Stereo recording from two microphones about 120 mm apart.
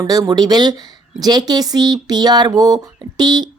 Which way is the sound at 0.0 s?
30° right (ahead or behind).